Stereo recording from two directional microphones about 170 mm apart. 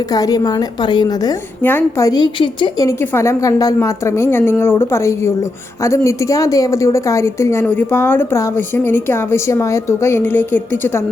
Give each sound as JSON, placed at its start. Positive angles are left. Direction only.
{"t": 0.1, "sound": "a woman's voice", "side_deg": 20}